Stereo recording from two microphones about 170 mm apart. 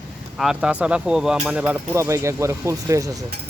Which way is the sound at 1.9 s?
15° right (ahead or behind).